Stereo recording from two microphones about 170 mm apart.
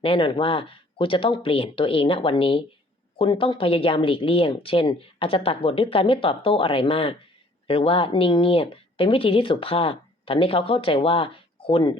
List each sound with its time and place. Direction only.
0.0 s speech: 30° left (ahead or behind)